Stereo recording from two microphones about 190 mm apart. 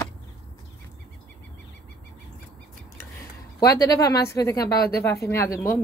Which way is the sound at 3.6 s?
20° left (ahead or behind).